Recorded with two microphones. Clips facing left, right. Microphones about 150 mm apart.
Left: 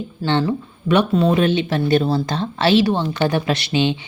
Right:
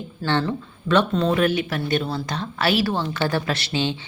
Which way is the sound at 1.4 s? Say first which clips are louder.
Left 4 dB; 25° left (ahead or behind).